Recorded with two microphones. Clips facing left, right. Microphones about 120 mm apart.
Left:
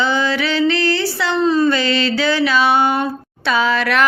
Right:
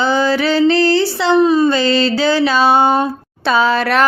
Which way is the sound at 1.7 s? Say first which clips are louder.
Right 3 dB; 30° right (ahead or behind).